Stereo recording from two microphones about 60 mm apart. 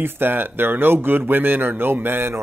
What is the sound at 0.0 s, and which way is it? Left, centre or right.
Speech, right.